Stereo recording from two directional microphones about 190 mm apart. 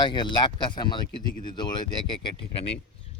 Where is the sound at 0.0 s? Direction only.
25° left (ahead or behind).